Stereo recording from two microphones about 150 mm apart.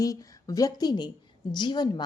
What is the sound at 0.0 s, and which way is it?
Speech, 25° left (ahead or behind).